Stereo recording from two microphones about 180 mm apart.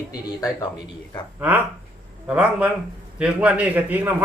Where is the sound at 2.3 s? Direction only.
5° right (ahead or behind).